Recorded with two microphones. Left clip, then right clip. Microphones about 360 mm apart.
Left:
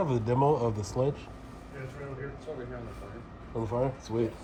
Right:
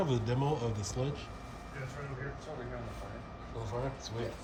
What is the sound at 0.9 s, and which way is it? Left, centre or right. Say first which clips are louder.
Speech: left 11 dB; centre.